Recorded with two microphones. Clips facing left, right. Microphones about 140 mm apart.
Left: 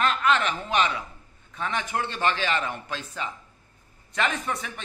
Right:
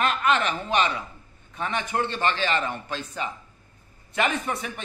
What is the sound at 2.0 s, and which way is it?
A man's voice, 5° left (ahead or behind).